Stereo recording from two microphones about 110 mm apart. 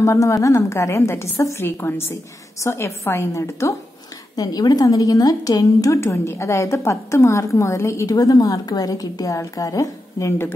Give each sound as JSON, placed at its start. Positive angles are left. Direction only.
{"t": 0.0, "sound": "a woman's voice", "side_deg": 30}
{"t": 4.4, "sound": "a woman's voice", "side_deg": 35}